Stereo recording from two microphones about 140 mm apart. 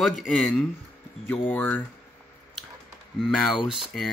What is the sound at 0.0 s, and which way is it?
Speech, centre (ahead or behind).